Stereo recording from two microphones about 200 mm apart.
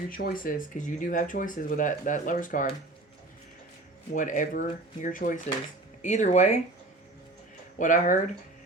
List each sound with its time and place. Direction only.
0.1 s speech: 45° left (ahead or behind)
4.1 s speech: 40° left (ahead or behind)
7.8 s speech: 40° left (ahead or behind)